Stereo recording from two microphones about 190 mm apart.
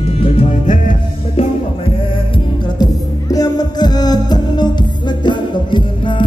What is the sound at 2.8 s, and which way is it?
Music, 20° left (ahead or behind).